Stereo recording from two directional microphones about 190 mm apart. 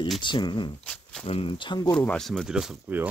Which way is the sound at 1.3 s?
30° left (ahead or behind).